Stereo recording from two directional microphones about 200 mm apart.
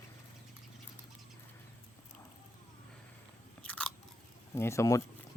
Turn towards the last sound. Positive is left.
turn(degrees=15)  # may be behind; listen again after turning